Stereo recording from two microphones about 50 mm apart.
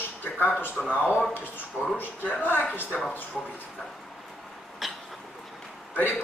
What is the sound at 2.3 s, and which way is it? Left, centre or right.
Speech, left.